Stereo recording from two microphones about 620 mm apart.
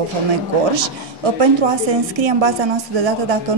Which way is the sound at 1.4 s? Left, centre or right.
Right.